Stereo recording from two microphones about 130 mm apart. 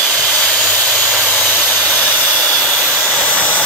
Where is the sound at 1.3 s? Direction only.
5° left (ahead or behind).